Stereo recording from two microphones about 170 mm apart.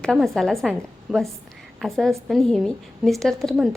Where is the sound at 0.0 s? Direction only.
Centre (ahead or behind).